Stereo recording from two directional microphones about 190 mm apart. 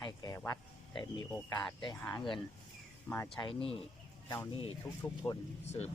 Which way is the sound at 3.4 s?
25° left (ahead or behind).